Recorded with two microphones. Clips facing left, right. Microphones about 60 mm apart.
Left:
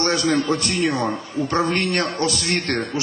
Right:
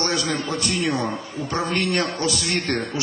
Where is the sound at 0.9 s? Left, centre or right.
Left.